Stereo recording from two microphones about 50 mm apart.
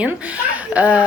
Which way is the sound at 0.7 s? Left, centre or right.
Right.